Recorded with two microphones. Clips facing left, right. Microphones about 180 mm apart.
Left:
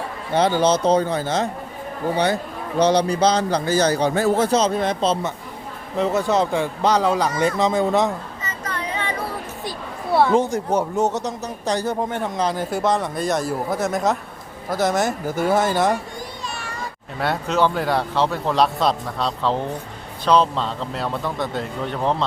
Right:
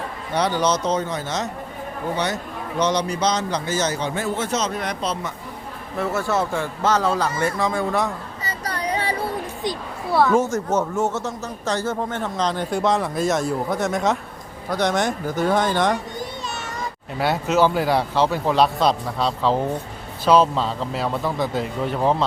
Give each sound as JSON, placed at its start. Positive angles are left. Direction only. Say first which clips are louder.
{"t": 0.3, "sound": "a man's voice", "louder": "left 3 dB", "side_deg": 25}
{"t": 8.4, "sound": "music", "louder": "right 3 dB", "side_deg": -35}
{"t": 10.1, "sound": "speech", "louder": "left 1 dB", "side_deg": 25}
{"t": 17.2, "sound": "a man's voice", "louder": "right 2 dB", "side_deg": -5}